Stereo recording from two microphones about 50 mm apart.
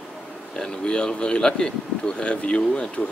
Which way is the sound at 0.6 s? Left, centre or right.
Centre.